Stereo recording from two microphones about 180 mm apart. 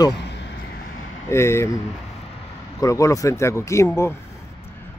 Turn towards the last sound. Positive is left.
turn(degrees=15)  # may be behind; listen again after turning